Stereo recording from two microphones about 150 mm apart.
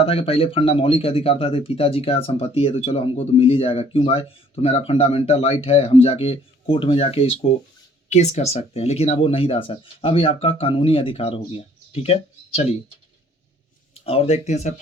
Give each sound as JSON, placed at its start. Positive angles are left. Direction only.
{"t": 0.0, "sound": "speech", "side_deg": 40}
{"t": 13.9, "sound": "a sound", "side_deg": 40}
{"t": 14.4, "sound": "speech", "side_deg": 50}